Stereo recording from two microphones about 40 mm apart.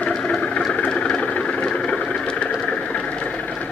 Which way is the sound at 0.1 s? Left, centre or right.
Left.